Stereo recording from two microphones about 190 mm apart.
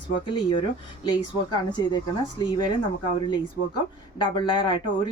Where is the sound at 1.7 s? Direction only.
25° left (ahead or behind).